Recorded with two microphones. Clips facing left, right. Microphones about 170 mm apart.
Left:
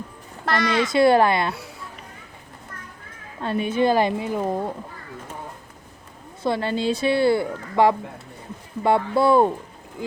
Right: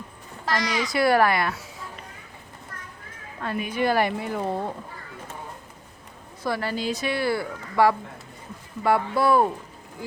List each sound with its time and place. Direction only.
0.4 s a child's voice: 60° left (ahead or behind)
0.9 s speech: 25° left (ahead or behind)
3.4 s speech: 25° left (ahead or behind)
6.4 s speech: 25° left (ahead or behind)